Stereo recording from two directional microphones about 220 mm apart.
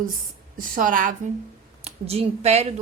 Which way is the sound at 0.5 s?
40° right (ahead or behind).